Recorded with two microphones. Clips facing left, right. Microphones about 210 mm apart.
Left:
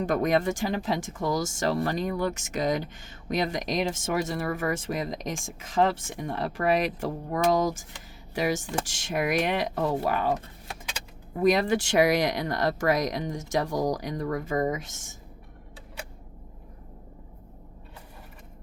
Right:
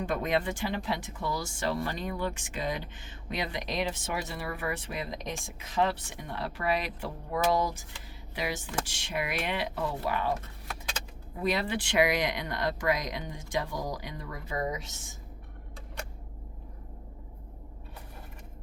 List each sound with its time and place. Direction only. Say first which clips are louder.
0.0 s speech: left 5 dB; 40° left (ahead or behind)
11.3 s speech: left 8 dB; 45° left (ahead or behind)